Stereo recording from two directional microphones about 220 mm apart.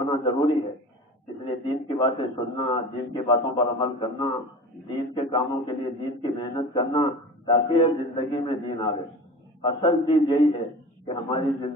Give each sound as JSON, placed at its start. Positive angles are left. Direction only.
{"t": 0.0, "sound": "a man's voice", "side_deg": 20}